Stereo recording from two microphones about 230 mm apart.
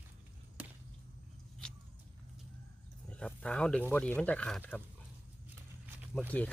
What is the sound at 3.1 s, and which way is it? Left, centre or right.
Speech, centre.